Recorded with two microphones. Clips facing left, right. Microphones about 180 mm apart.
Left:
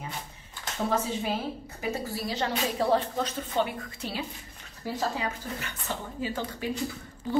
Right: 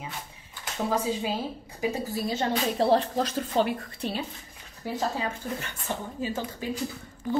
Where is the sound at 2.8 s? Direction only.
35° right (ahead or behind).